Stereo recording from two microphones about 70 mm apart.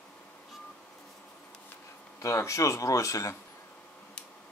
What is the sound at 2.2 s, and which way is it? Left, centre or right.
Speech, left.